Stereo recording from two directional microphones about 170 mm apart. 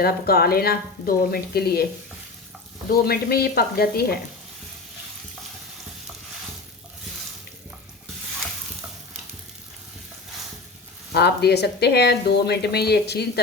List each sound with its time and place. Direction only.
0.0 s a woman's voice: 65° left (ahead or behind)
2.9 s a woman's voice: 65° left (ahead or behind)
11.1 s speech: 70° left (ahead or behind)